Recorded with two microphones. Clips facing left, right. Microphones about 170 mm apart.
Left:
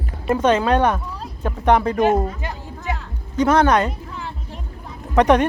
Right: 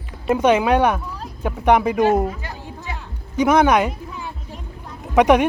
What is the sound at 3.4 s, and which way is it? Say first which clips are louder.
Speech: right 1 dB; 10° right (ahead or behind).